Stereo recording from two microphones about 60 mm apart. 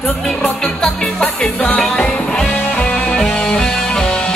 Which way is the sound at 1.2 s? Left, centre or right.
Left.